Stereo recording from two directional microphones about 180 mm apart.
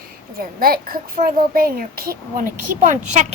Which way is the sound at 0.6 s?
55° right (ahead or behind).